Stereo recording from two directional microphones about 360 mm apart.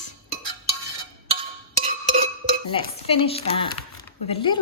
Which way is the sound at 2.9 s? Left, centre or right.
Centre.